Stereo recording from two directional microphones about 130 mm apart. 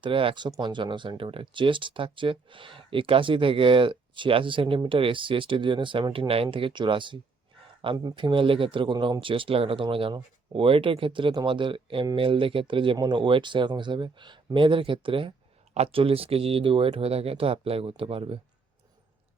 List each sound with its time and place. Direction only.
0.0 s speech: 40° right (ahead or behind)